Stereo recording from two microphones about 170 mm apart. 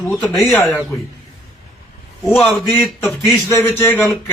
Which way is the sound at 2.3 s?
10° left (ahead or behind).